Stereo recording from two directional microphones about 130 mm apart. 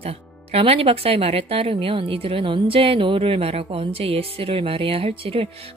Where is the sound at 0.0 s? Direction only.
50° right (ahead or behind).